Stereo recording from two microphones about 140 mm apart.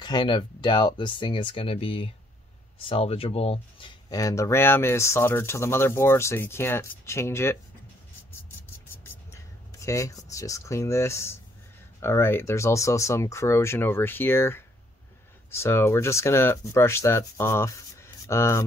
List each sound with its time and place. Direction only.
0.0 s speech: 30° left (ahead or behind)
4.1 s speech: 25° left (ahead or behind)
9.0 s a sound: 20° left (ahead or behind)
10.3 s speech: 25° left (ahead or behind)